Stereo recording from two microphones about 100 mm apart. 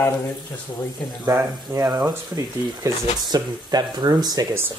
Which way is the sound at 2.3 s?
40° right (ahead or behind).